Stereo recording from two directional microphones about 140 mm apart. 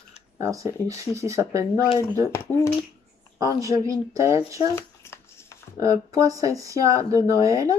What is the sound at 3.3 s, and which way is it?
Speech, 25° right (ahead or behind).